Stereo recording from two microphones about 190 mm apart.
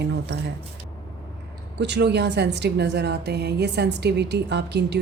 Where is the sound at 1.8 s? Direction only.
65° right (ahead or behind).